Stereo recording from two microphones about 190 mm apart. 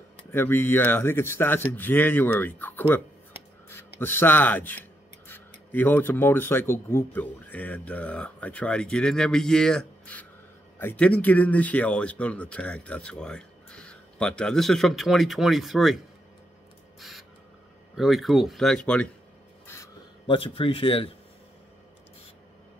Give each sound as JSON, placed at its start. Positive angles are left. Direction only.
{"t": 0.3, "sound": "speech", "side_deg": 10}
{"t": 4.0, "sound": "speech", "side_deg": 10}
{"t": 17.9, "sound": "speech", "side_deg": 0}
{"t": 20.2, "sound": "speech", "side_deg": 30}